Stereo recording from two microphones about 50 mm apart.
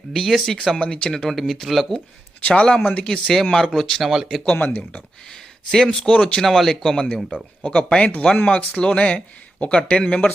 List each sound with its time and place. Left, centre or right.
0.1 s speech: centre
0.8 s speech: centre
2.4 s speech: left; by 4.5 s centre
4.5 s speech: left
5.3 s speech: centre
6.4 s speech: centre
7.8 s speech: left